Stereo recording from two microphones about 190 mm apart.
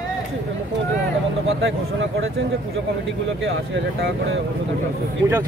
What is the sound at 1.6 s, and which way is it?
Speech, 80° right.